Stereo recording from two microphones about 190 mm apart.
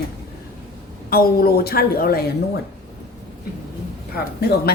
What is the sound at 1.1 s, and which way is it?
A woman's voice, 50° left (ahead or behind).